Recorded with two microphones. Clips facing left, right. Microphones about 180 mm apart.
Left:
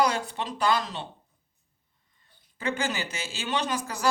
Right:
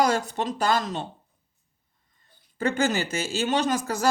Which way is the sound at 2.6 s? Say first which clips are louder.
Right 6 dB; 45° right (ahead or behind).